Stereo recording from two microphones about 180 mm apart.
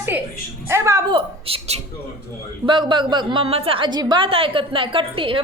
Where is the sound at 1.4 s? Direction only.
35° right (ahead or behind).